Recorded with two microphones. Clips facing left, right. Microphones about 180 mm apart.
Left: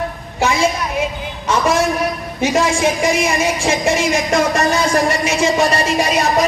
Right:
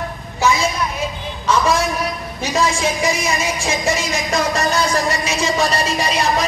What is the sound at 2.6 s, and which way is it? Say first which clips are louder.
Music: right 1 dB; 50° left (ahead or behind).